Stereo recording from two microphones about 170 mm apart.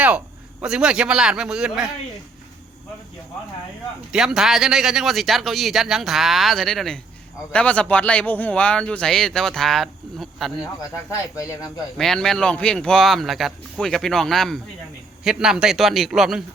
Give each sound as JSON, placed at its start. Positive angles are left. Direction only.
{"t": 0.6, "sound": "speech", "side_deg": -5}
{"t": 4.1, "sound": "speech", "side_deg": -5}
{"t": 11.1, "sound": "speech", "side_deg": 20}
{"t": 11.9, "sound": "speech", "side_deg": 5}